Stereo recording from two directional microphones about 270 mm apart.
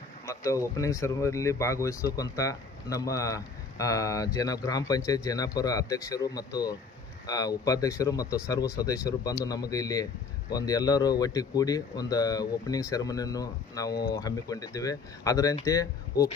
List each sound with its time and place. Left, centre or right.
0.3 s speech: centre
13.9 s speech: left
14.2 s speech: centre